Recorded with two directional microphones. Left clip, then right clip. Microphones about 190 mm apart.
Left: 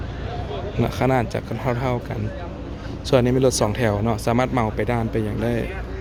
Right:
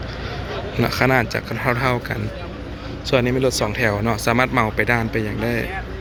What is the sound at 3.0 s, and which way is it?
A man's voice, 20° left (ahead or behind).